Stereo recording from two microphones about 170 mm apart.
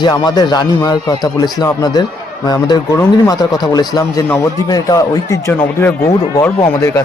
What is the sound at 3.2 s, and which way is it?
A man's voice, 25° left (ahead or behind).